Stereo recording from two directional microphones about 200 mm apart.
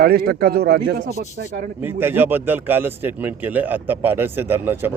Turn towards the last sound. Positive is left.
turn(degrees=-10)  # may be behind; listen again after turning